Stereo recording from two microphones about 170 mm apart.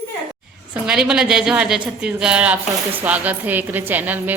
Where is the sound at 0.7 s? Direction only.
5° right (ahead or behind).